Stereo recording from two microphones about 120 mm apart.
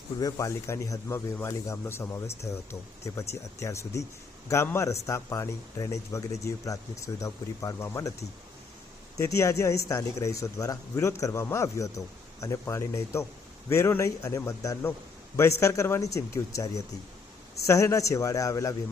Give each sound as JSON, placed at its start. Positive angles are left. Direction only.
{"t": 0.2, "sound": "speech", "side_deg": 30}
{"t": 9.1, "sound": "speech", "side_deg": 25}